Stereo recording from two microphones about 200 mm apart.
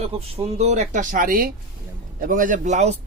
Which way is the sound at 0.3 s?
30° right (ahead or behind).